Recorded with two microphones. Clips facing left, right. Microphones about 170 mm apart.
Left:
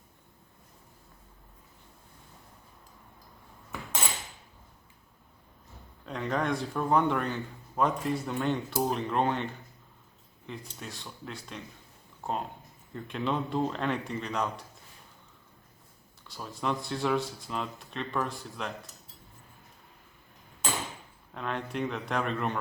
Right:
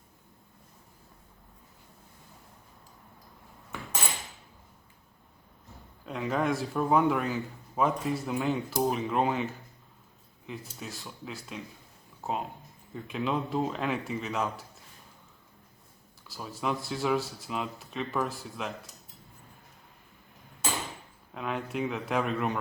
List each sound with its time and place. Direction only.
6.1 s a man's voice: 5° right (ahead or behind)
16.2 s a man's voice: 5° right (ahead or behind)
21.3 s a man's voice: 5° right (ahead or behind)